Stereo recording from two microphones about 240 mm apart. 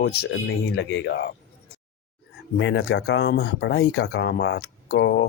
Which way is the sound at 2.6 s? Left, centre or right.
Left.